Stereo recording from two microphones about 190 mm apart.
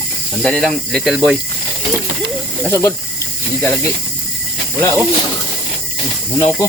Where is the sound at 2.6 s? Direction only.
15° left (ahead or behind).